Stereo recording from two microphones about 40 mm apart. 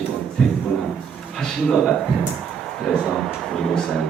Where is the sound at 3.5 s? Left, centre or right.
Centre.